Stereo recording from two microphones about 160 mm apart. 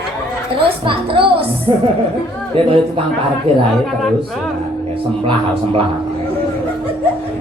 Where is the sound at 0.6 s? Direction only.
35° right (ahead or behind).